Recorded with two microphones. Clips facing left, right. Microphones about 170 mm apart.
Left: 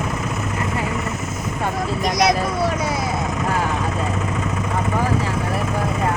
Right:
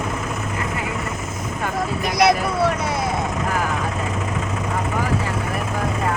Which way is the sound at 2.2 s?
Centre (ahead or behind).